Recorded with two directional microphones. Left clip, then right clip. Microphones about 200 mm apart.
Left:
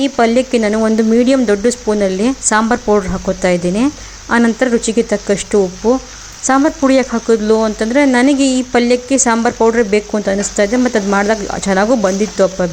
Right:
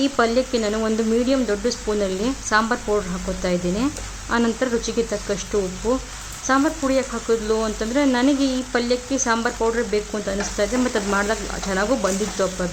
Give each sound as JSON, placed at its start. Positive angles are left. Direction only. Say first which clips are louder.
{"t": 0.0, "sound": "speech", "louder": "left 7 dB", "side_deg": 25}